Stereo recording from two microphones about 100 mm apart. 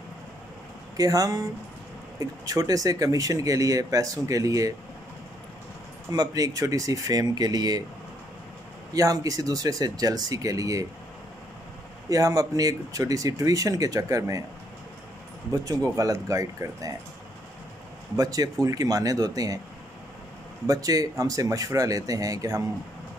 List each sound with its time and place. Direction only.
0.9 s speech: 35° right (ahead or behind)
6.1 s speech: 40° right (ahead or behind)
8.9 s speech: 35° right (ahead or behind)
12.1 s speech: 35° right (ahead or behind)
15.5 s speech: 40° right (ahead or behind)
18.1 s speech: 40° right (ahead or behind)
20.6 s speech: 35° right (ahead or behind)